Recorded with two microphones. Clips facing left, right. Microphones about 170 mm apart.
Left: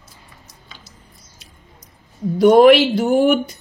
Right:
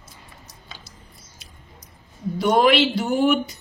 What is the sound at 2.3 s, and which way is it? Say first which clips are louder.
Speech: left 8 dB; 55° left (ahead or behind).